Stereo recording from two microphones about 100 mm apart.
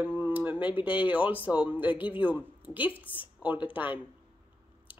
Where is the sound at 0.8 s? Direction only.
60° left (ahead or behind).